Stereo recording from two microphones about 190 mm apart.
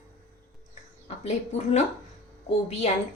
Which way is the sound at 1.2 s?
35° left (ahead or behind).